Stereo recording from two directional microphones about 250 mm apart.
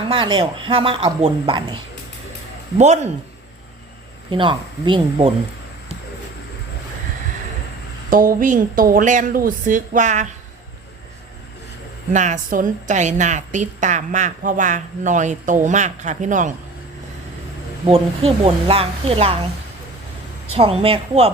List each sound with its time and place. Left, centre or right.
0.1 s a woman's voice: centre
4.3 s a woman's voice: centre
8.1 s speech: right
12.1 s a woman's voice: right
17.8 s a woman's voice: right
20.5 s a woman's voice: right